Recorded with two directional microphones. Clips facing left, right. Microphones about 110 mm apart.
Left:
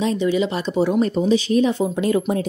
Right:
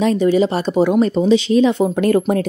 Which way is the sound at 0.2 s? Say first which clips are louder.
Right 5 dB; 45° right (ahead or behind).